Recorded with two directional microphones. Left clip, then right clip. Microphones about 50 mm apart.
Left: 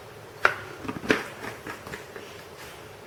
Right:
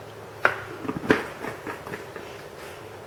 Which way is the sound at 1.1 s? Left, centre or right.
Centre.